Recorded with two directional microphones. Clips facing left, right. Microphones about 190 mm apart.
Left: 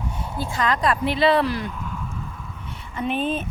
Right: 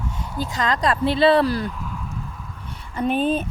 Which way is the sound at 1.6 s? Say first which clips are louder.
Right 1 dB; centre (ahead or behind).